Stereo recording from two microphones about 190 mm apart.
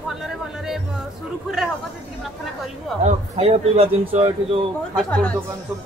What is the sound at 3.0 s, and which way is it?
Speech, 35° right (ahead or behind).